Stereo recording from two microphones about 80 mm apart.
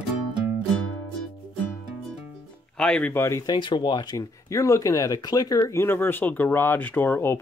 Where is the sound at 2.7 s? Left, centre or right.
Centre.